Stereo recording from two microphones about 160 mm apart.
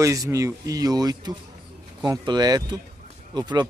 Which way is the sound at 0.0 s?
20° right (ahead or behind).